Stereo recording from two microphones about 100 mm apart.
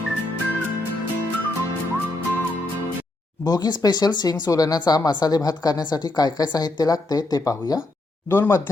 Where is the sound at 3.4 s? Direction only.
40° left (ahead or behind).